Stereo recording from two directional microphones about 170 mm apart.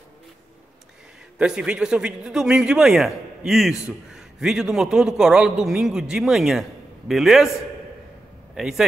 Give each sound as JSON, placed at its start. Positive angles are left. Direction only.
{"t": 1.4, "sound": "speech", "side_deg": -5}
{"t": 8.5, "sound": "speech", "side_deg": 0}